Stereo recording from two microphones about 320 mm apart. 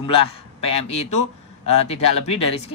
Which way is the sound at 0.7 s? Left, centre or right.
Centre.